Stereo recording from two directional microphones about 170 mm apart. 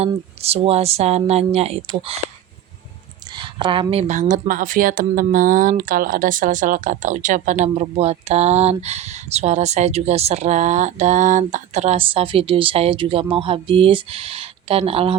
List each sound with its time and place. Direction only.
0.0 s speech: 35° right (ahead or behind)
3.3 s speech: 30° right (ahead or behind)